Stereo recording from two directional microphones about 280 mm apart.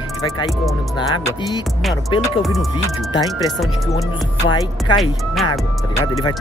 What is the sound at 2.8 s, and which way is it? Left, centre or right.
Speech, centre.